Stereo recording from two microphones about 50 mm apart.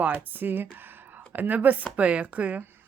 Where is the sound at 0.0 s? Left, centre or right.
Right.